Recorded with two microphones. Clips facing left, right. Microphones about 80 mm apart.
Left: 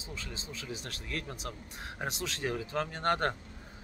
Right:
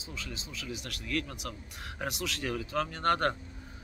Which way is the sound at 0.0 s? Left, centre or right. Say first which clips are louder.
Right 1 dB; left.